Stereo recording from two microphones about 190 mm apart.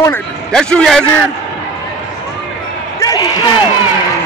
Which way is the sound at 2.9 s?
20° left (ahead or behind).